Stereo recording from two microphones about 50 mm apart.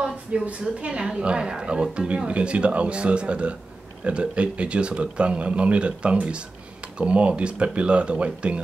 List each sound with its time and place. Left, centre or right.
0.5 s a woman's voice: right